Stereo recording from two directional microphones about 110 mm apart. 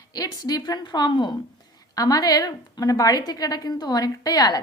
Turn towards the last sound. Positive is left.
turn(degrees=35)  # may be behind; listen again after turning